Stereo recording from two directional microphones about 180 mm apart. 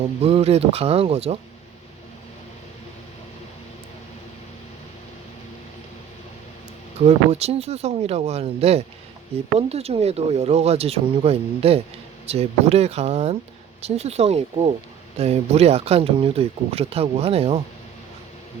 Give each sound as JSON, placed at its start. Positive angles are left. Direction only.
{"t": 0.2, "sound": "speech", "side_deg": -35}
{"t": 7.0, "sound": "speech", "side_deg": -35}